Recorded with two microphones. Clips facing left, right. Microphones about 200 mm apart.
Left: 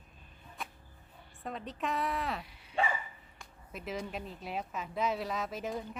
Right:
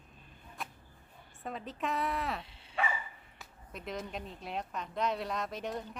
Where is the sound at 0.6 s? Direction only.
Centre (ahead or behind).